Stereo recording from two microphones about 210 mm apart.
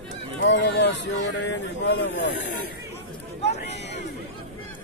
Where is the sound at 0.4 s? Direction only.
60° left (ahead or behind).